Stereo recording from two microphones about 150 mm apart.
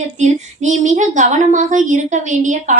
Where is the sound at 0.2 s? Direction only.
55° right (ahead or behind).